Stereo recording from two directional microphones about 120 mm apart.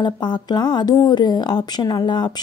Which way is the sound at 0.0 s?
40° left (ahead or behind).